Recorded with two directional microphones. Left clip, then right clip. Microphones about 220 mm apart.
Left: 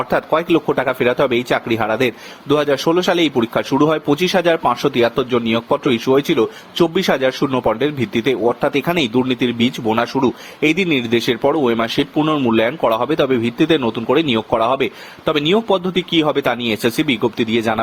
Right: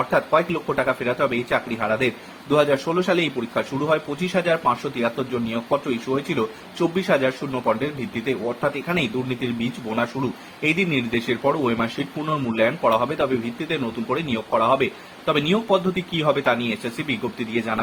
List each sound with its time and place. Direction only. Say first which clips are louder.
0.3 s speech: left 5 dB; 45° left (ahead or behind)